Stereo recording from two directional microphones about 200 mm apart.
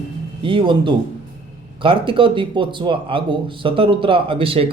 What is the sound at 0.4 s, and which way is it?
Speech, 25° right (ahead or behind).